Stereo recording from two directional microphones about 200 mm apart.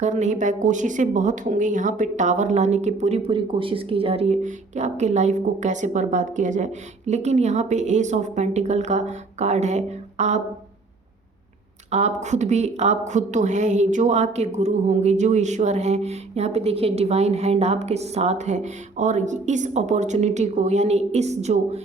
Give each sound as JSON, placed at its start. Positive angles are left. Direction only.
{"t": 0.0, "sound": "speech", "side_deg": -35}
{"t": 11.9, "sound": "speech", "side_deg": -35}